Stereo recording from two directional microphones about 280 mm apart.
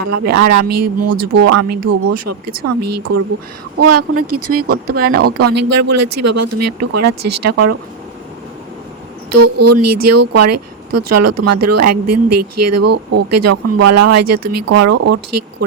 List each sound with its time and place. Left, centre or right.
0.0 s speech: right
4.9 s speech: right
5.1 s speech: right
9.3 s speech: right